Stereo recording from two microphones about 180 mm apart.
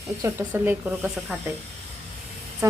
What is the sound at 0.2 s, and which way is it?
Speech, 15° right (ahead or behind).